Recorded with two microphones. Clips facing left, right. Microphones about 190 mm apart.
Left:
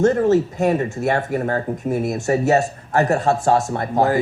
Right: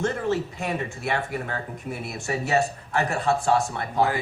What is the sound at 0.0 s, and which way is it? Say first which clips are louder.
Speech: left 10 dB; 45° left (ahead or behind).